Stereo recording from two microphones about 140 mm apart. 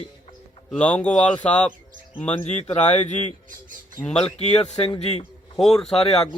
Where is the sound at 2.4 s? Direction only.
50° left (ahead or behind).